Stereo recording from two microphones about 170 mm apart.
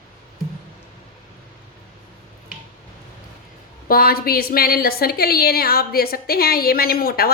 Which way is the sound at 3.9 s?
60° left (ahead or behind).